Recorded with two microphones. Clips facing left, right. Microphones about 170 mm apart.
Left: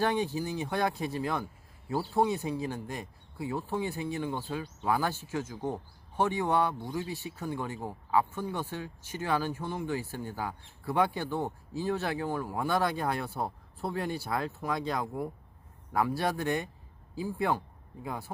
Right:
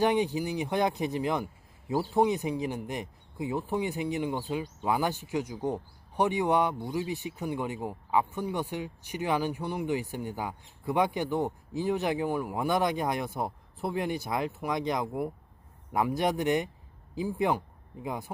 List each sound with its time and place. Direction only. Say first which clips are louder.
0.0 s speech: right 3 dB; 15° right (ahead or behind)